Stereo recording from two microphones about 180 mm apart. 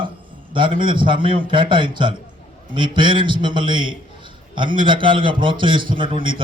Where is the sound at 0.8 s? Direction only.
25° right (ahead or behind).